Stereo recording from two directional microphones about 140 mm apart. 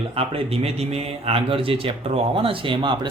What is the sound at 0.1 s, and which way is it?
A man's voice, 45° right (ahead or behind).